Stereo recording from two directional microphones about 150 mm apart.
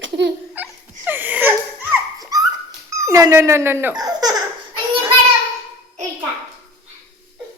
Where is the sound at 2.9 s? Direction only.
20° right (ahead or behind).